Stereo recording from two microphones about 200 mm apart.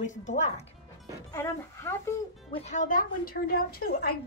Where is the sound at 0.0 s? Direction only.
35° left (ahead or behind).